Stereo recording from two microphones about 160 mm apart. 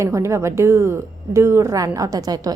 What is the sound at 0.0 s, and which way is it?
A woman's voice, 20° right (ahead or behind).